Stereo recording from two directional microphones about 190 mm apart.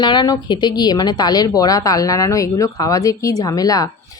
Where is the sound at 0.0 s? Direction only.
25° left (ahead or behind).